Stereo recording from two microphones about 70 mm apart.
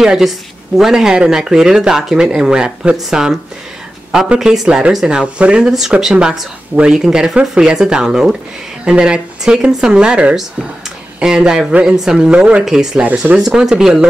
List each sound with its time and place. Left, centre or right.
0.0 s speech: centre
13.0 s speech: centre